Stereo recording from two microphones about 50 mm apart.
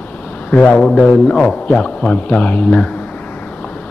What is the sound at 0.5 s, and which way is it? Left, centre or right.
Speech, left.